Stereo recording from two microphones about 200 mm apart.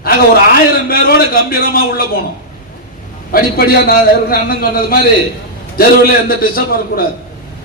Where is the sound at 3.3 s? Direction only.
50° left (ahead or behind).